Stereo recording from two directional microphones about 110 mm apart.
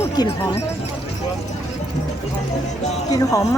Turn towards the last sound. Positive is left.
turn(degrees=30)  # may be behind; listen again after turning